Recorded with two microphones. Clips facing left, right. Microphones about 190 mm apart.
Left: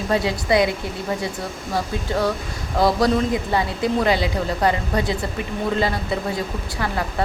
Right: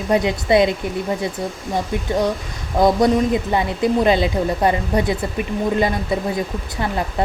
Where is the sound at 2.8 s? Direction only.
20° right (ahead or behind).